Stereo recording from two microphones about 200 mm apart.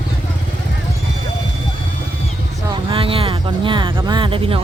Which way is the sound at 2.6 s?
25° right (ahead or behind).